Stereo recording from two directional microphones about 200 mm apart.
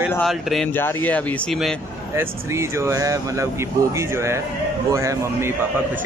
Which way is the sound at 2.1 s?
15° right (ahead or behind).